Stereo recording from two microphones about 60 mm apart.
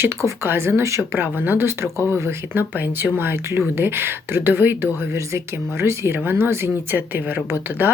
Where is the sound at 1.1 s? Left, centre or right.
Right.